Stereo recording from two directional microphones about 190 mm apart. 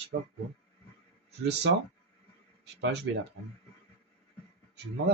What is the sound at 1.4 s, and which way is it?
Speech, 60° right (ahead or behind).